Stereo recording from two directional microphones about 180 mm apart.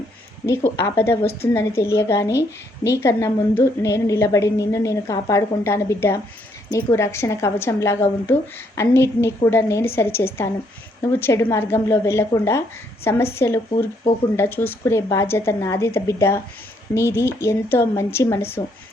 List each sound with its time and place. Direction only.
0.4 s a woman's voice: 15° left (ahead or behind)